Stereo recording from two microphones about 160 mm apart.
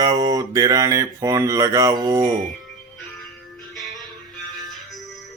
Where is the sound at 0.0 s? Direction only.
25° right (ahead or behind).